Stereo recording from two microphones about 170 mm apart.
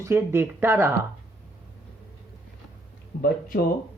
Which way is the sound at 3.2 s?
55° left (ahead or behind).